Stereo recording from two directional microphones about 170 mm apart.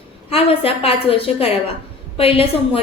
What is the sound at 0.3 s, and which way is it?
A woman's voice, 35° left (ahead or behind).